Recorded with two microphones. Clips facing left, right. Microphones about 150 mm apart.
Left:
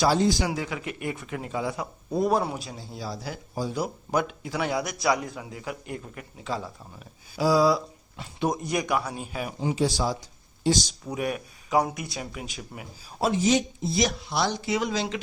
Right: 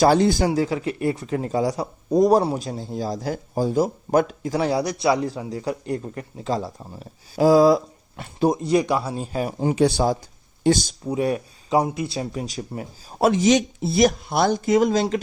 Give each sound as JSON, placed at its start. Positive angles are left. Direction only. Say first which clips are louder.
{"t": 0.0, "sound": "speech", "louder": "right 6 dB", "side_deg": -55}
{"t": 0.5, "sound": "a man's voice", "louder": "right 9 dB", "side_deg": -35}
{"t": 8.4, "sound": "a man's voice", "louder": "right 8 dB", "side_deg": -30}
{"t": 11.1, "sound": "a man's voice", "louder": "right 7 dB", "side_deg": -30}
{"t": 13.1, "sound": "speech", "louder": "right 6 dB", "side_deg": -75}